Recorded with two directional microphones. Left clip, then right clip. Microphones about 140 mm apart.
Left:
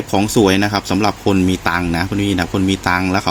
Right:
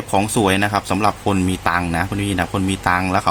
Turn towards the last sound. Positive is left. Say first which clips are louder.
# left 1 dB
turn(degrees=0)  # may be behind; listen again after turning